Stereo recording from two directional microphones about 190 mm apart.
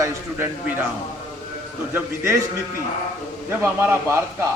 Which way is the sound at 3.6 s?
10° right (ahead or behind).